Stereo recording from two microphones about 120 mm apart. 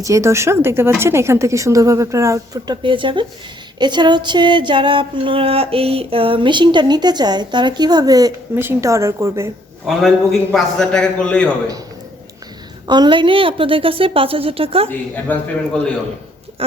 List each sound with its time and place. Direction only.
0.0 s speech: 25° right (ahead or behind)
2.8 s a woman's voice: 45° right (ahead or behind)
3.8 s a sound: 40° right (ahead or behind)
8.5 s speech: 20° right (ahead or behind)
10.5 s a man's voice: 5° left (ahead or behind)
12.9 s a woman's voice: 40° right (ahead or behind)
14.8 s a man's voice: 15° left (ahead or behind)